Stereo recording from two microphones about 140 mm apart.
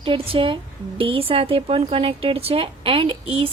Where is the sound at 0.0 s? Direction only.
40° right (ahead or behind).